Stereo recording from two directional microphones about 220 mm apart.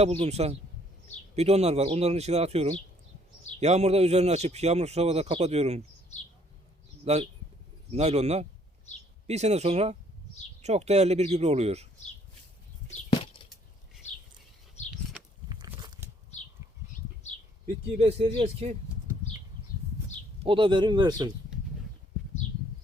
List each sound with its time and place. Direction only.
0.0 s a man's voice: 30° right (ahead or behind)
7.0 s a man's voice: 30° right (ahead or behind)
15.4 s a sound: 20° right (ahead or behind)
17.3 s a sound: 30° left (ahead or behind)
18.0 s a man's voice: 25° right (ahead or behind)
20.4 s a man's voice: 20° right (ahead or behind)